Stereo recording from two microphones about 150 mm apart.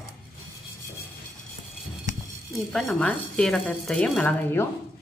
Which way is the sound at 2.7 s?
Centre (ahead or behind).